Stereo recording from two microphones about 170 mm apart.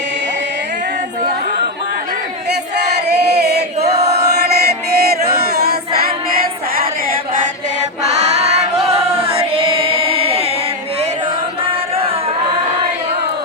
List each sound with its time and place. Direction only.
2.7 s battle cry: 75° right (ahead or behind)
4.1 s mantra: 70° right (ahead or behind)
5.5 s choir: 65° right (ahead or behind)
8.1 s female singing: 40° right (ahead or behind)
8.9 s choir: 35° right (ahead or behind)
11.6 s music: 35° right (ahead or behind)